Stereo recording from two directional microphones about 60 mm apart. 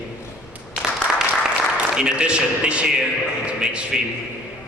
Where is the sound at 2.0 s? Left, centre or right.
Centre.